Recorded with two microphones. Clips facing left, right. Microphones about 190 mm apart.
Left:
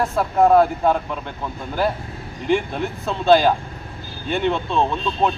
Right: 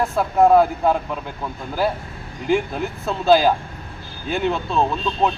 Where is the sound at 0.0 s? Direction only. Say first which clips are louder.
Right 1 dB; centre (ahead or behind).